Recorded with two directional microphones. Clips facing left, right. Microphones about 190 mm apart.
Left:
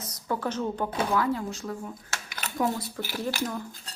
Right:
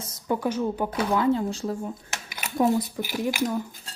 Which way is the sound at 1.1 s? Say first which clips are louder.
Right 7 dB; 25° right (ahead or behind).